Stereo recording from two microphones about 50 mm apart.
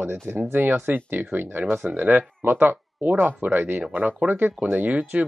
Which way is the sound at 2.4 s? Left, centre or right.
Right.